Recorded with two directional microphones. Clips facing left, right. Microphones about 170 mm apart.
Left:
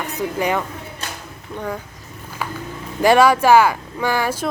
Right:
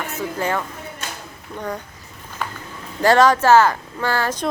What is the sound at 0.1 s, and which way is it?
A woman's voice, 15° left (ahead or behind).